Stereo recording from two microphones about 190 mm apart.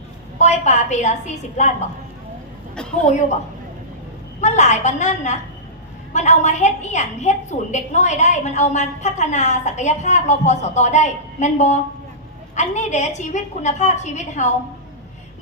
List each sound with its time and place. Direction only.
0.3 s a woman's voice: 40° left (ahead or behind)
4.4 s a woman's voice: 40° left (ahead or behind)